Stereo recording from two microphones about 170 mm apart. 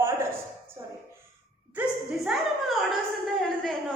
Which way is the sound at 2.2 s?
Centre (ahead or behind).